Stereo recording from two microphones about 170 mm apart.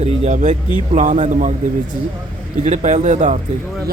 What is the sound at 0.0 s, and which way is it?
A man's voice, 40° right (ahead or behind).